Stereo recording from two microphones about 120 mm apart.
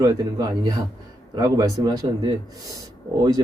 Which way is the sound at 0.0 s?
30° right (ahead or behind).